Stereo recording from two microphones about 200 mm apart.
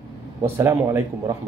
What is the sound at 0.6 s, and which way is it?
Speech, 15° right (ahead or behind).